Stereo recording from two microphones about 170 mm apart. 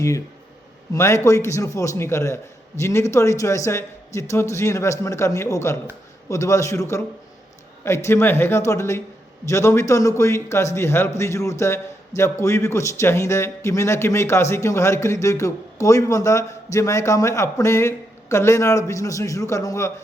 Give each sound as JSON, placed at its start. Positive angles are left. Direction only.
{"t": 0.9, "sound": "a man's voice", "side_deg": 15}